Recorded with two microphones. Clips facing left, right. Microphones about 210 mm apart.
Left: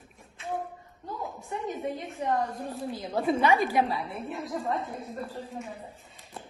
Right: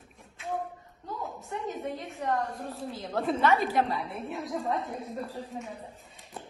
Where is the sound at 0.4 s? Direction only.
Centre (ahead or behind).